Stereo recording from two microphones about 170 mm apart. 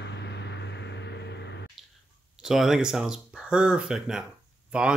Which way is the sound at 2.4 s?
5° right (ahead or behind).